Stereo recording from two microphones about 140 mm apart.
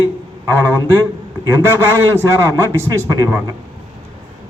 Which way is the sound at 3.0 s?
20° right (ahead or behind).